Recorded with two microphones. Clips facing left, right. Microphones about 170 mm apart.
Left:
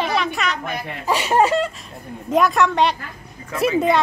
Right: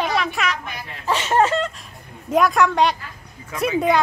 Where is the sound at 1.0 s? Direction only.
10° left (ahead or behind).